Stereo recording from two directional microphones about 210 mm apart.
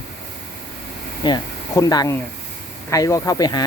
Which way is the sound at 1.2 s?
20° left (ahead or behind).